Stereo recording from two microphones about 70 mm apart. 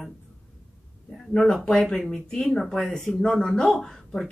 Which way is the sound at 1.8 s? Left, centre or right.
Centre.